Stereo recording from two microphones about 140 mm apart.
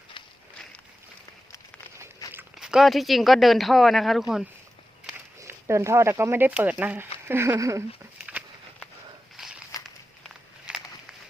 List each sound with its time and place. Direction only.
2.3 s speech: 5° right (ahead or behind)
5.4 s speech: 20° right (ahead or behind)
9.4 s walk: 5° right (ahead or behind)